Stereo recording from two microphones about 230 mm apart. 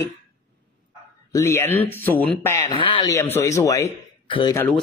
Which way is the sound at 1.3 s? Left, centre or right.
Centre.